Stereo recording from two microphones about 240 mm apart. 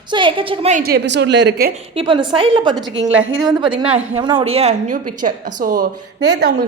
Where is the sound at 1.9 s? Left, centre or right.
Right.